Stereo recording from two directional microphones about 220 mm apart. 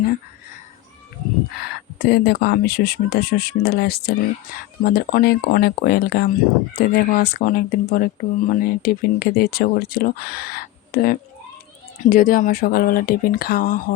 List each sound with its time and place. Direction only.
2.0 s speech: 45° left (ahead or behind)